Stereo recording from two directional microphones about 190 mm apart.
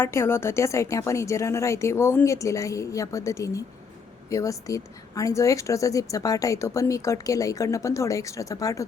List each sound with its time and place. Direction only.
0.0 s a woman's voice: 15° left (ahead or behind)